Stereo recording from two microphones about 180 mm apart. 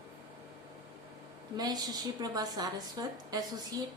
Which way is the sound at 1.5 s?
20° right (ahead or behind).